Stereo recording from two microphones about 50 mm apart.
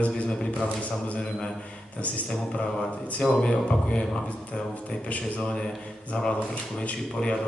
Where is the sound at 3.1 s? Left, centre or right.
Centre.